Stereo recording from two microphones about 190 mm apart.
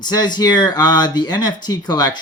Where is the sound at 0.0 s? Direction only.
20° left (ahead or behind).